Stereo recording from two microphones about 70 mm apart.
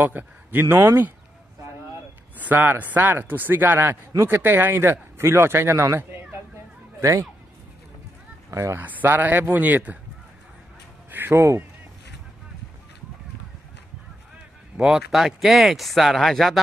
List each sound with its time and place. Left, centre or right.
0.0 s speech: right
2.3 s a man's voice: right
8.5 s speech: right
8.7 s a man's voice: right
11.1 s a sound: right
11.3 s speech: right
14.8 s speech: centre